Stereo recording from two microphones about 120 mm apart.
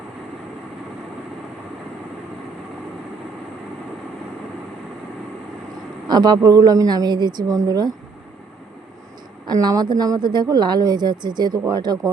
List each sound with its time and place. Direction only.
6.1 s speech: 35° right (ahead or behind)
9.5 s speech: 30° right (ahead or behind)